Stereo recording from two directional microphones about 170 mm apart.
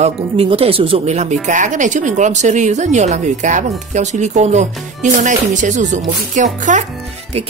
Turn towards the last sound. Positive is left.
turn(degrees=-35)  # may be behind; listen again after turning